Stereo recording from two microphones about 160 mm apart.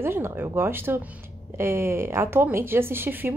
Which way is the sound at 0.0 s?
15° right (ahead or behind).